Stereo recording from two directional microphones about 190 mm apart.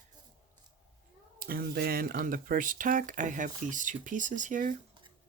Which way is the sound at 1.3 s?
50° right (ahead or behind).